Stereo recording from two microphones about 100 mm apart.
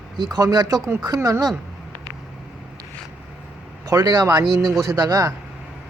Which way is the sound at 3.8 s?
40° right (ahead or behind).